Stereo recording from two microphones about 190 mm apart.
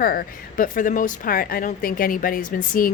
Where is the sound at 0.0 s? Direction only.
50° left (ahead or behind).